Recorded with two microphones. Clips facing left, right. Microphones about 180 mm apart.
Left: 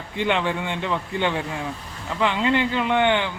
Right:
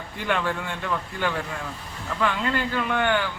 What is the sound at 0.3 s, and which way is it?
Speech, 20° left (ahead or behind).